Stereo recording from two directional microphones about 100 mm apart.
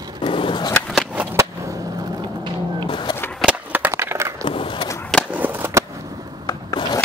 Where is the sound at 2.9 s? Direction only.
50° left (ahead or behind).